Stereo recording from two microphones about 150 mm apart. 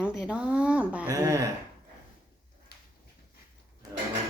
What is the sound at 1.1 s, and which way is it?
Speech, 20° right (ahead or behind).